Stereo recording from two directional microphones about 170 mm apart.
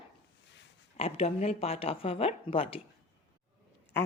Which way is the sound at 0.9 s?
35° left (ahead or behind).